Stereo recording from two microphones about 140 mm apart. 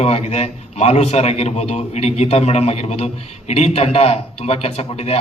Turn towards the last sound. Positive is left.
turn(degrees=45)  # may be behind; listen again after turning